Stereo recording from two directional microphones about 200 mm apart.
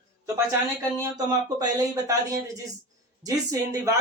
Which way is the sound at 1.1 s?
20° right (ahead or behind).